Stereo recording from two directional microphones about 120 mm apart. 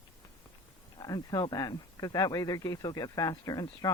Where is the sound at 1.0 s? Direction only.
35° left (ahead or behind).